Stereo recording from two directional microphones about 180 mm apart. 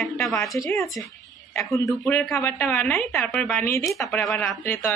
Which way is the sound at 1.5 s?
15° left (ahead or behind).